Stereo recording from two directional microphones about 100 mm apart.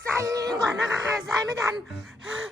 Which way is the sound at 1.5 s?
30° right (ahead or behind).